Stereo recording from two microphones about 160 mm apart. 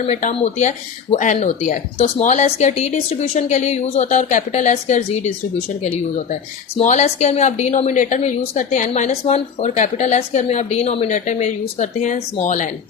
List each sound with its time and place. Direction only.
0.0 s speech: 50° left (ahead or behind)
6.7 s speech: 45° left (ahead or behind)